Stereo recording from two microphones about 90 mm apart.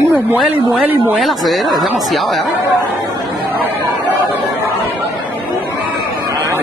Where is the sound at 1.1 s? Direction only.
Centre (ahead or behind).